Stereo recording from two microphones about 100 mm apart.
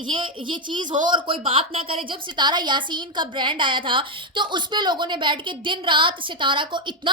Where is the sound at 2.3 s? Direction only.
45° right (ahead or behind).